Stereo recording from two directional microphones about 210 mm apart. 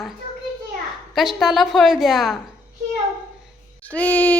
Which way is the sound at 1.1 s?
Centre (ahead or behind).